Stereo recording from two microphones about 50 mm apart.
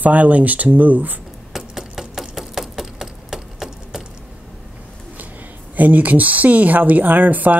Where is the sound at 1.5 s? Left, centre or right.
Centre.